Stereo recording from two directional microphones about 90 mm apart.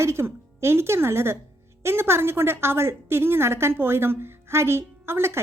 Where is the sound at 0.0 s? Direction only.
30° right (ahead or behind).